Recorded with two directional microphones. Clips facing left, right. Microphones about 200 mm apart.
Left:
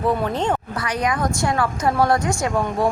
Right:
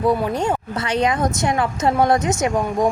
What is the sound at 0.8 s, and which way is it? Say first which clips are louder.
A woman's voice: right 6 dB; 25° right (ahead or behind).